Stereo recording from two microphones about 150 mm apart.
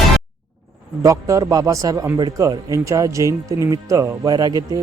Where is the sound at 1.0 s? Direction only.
20° right (ahead or behind).